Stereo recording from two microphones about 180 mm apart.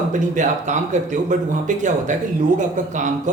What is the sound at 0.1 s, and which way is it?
Speech, 45° right (ahead or behind).